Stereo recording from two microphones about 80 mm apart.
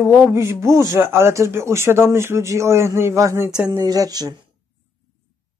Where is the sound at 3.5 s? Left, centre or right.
Centre.